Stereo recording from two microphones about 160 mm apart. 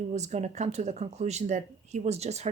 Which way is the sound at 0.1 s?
45° right (ahead or behind).